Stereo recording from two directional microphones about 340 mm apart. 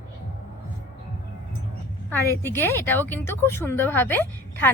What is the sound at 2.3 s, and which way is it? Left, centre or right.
Speech, centre.